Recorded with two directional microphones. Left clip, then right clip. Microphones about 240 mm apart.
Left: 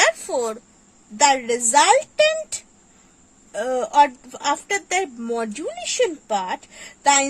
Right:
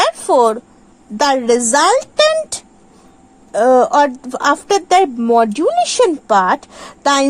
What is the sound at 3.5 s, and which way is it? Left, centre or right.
A woman's voice, centre.